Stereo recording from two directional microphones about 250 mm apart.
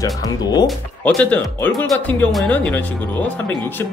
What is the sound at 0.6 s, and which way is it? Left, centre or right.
Speech, centre.